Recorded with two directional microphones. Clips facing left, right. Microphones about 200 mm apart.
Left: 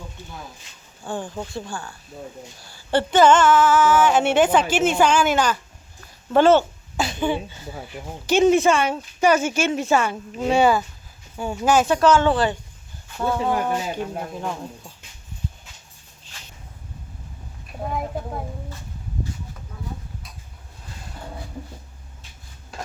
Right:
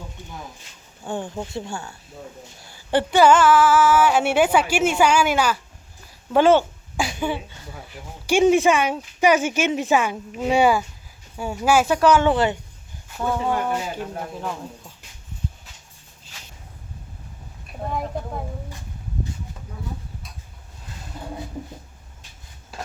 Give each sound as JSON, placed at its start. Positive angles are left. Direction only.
{"t": 1.0, "sound": "speech", "side_deg": -20}
{"t": 8.3, "sound": "speech", "side_deg": -10}
{"t": 13.5, "sound": "speech", "side_deg": 10}
{"t": 13.9, "sound": "speech", "side_deg": 0}
{"t": 17.8, "sound": "speech", "side_deg": 5}